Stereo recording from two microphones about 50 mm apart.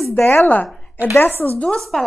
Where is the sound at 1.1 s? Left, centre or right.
Left.